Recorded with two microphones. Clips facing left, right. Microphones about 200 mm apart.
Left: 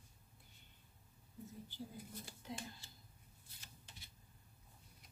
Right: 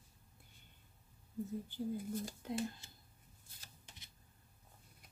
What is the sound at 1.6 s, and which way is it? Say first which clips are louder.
Speech: right 11 dB; 45° right (ahead or behind).